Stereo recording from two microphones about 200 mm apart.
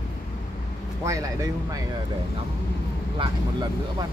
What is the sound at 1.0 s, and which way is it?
Speech, 15° right (ahead or behind).